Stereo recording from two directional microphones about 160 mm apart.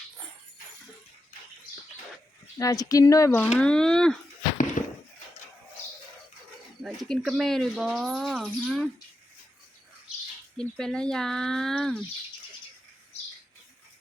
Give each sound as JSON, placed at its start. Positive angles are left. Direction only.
{"t": 2.6, "sound": "speech", "side_deg": 20}
{"t": 3.6, "sound": "speech", "side_deg": 5}
{"t": 4.8, "sound": "a sound", "side_deg": 50}
{"t": 6.8, "sound": "speech", "side_deg": 0}
{"t": 10.6, "sound": "speech", "side_deg": 5}